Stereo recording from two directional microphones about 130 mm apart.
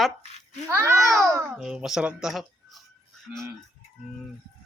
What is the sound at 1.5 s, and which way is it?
Speech, 5° right (ahead or behind).